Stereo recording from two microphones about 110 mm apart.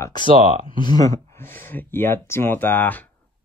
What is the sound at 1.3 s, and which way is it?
Speech, 20° left (ahead or behind).